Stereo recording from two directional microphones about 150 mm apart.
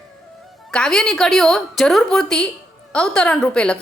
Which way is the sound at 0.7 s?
5° left (ahead or behind).